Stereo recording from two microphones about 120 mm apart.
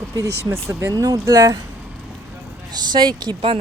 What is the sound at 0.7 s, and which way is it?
Speech, 25° right (ahead or behind).